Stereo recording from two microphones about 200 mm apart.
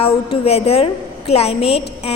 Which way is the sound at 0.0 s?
30° left (ahead or behind).